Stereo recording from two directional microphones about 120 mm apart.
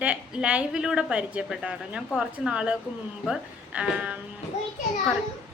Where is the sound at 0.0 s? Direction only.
10° right (ahead or behind).